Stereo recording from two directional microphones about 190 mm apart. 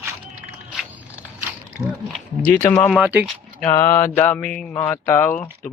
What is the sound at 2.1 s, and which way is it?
Speech, 10° left (ahead or behind).